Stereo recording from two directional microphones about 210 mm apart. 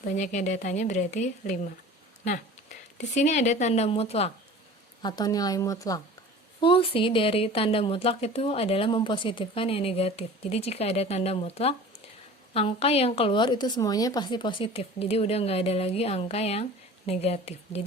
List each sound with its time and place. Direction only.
0.0 s a woman's voice: 35° left (ahead or behind)
3.0 s a woman's voice: 35° left (ahead or behind)
5.0 s a woman's voice: 20° left (ahead or behind)